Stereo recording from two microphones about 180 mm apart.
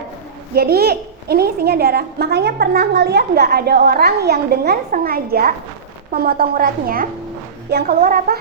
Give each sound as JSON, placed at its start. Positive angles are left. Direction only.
{"t": 0.5, "sound": "a woman's voice", "side_deg": -60}